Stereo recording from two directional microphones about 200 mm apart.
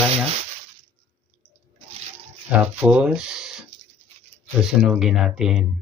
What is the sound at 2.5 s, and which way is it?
Speech, 10° right (ahead or behind).